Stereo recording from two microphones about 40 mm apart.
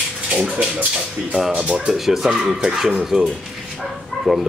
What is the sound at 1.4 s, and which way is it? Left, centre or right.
Speech, centre.